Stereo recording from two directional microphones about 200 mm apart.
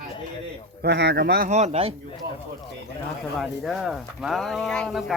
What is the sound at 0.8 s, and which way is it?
Speech, 55° right (ahead or behind).